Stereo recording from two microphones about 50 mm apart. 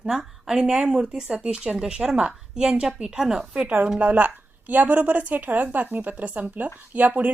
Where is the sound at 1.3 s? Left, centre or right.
Right.